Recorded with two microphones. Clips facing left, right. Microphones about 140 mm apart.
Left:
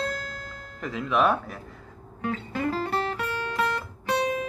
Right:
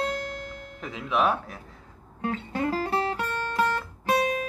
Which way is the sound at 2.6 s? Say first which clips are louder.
Right 1 dB; 30° right (ahead or behind).